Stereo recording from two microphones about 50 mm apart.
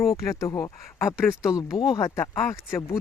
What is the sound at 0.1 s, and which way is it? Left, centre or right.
Speech, left.